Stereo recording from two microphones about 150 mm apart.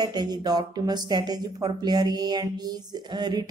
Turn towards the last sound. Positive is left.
turn(degrees=-30)  # may be behind; listen again after turning